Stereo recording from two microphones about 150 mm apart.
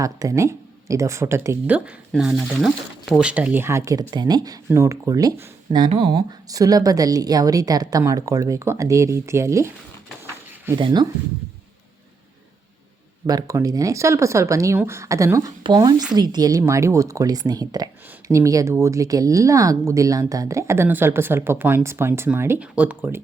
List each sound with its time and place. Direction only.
0.0 s speech: 20° right (ahead or behind)
10.8 s speech: 30° right (ahead or behind)
13.2 s speech: 25° right (ahead or behind)